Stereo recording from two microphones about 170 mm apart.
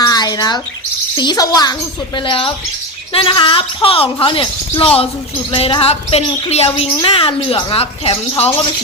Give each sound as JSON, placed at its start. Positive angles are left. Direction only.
{"t": 0.1, "sound": "bird", "side_deg": 25}
{"t": 1.1, "sound": "a child's voice", "side_deg": 25}